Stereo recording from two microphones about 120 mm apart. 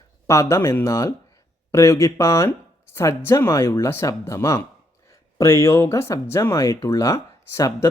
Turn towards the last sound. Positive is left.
turn(degrees=25)  # may be behind; listen again after turning